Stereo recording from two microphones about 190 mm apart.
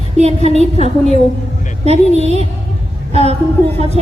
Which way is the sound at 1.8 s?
35° right (ahead or behind).